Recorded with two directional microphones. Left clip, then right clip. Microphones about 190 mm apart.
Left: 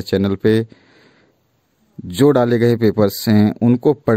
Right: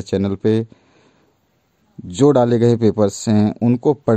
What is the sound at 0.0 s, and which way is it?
Speech, 20° left (ahead or behind).